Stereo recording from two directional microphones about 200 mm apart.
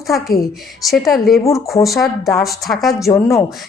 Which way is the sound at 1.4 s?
15° left (ahead or behind).